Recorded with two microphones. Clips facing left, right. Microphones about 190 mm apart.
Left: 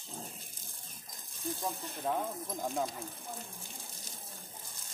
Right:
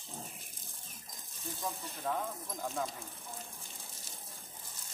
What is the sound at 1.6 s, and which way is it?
Speech, 20° left (ahead or behind).